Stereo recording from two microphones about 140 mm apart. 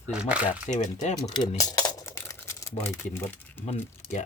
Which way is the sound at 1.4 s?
25° left (ahead or behind).